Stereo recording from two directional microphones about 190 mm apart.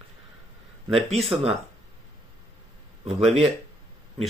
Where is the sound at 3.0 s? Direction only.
35° right (ahead or behind).